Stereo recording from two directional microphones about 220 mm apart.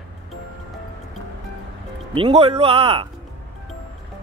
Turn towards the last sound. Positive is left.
turn(degrees=-25)  # may be behind; listen again after turning